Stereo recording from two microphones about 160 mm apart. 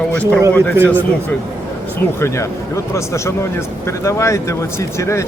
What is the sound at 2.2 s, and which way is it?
Speech, 15° left (ahead or behind).